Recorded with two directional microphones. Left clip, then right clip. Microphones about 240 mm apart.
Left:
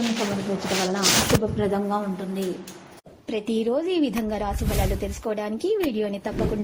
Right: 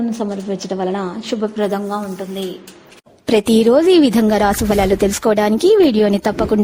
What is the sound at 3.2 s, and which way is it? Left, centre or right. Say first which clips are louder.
Speech: right 13 dB; right.